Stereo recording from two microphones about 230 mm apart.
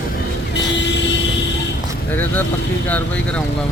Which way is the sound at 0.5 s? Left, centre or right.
Left.